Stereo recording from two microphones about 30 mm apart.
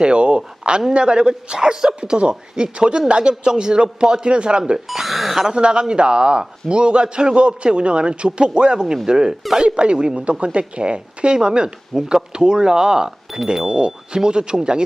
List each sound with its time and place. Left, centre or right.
0.0 s a man's voice: right
3.5 s speech: right
4.9 s speech: centre
5.5 s a man's voice: right